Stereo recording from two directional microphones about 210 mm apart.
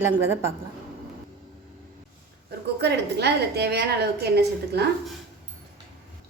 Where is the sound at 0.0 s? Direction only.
10° right (ahead or behind).